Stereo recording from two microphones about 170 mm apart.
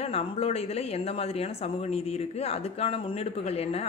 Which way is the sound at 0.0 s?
35° left (ahead or behind).